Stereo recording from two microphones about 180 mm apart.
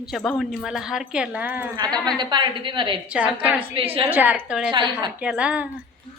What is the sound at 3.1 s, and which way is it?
Speech, 5° right (ahead or behind).